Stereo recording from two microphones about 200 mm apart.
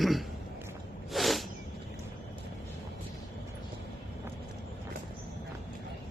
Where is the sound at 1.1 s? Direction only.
Centre (ahead or behind).